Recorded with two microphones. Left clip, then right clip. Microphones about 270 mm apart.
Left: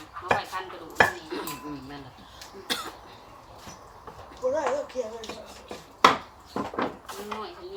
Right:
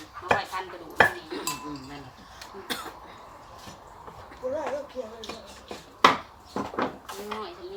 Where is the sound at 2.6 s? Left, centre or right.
Centre.